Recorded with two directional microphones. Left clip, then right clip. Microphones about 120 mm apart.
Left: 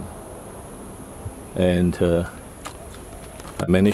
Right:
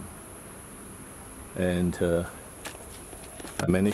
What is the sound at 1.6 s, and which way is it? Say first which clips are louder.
Speech: left 7 dB; centre (ahead or behind).